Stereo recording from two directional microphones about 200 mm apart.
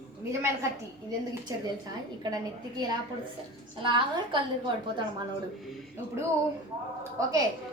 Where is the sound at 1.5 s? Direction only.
15° right (ahead or behind).